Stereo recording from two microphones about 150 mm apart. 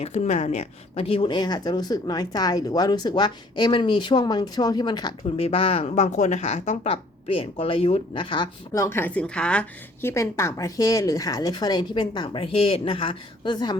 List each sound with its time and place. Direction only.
0.0 s speech: 45° left (ahead or behind); by 5.3 s 30° left (ahead or behind)
5.4 s speech: 40° left (ahead or behind)
8.7 s speech: 15° left (ahead or behind)